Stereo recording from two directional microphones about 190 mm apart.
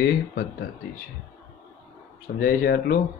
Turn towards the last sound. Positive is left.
turn(degrees=55)  # may be behind; listen again after turning